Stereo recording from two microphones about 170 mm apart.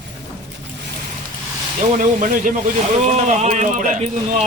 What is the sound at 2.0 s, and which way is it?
Speech, 50° right (ahead or behind).